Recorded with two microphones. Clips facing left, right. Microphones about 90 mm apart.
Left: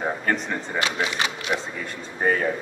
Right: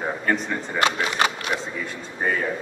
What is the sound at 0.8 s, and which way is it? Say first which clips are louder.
Speech: right 5 dB; 45° right (ahead or behind).